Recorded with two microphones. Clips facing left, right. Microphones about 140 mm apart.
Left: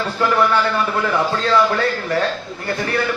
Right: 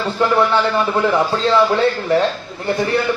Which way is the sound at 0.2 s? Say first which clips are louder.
Right 2 dB; 30° right (ahead or behind).